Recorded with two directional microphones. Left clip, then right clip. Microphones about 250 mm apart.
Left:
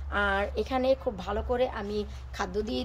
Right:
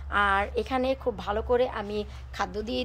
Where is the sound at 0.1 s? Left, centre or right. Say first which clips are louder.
Right 3 dB; centre.